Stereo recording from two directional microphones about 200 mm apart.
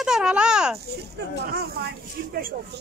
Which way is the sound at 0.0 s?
5° right (ahead or behind).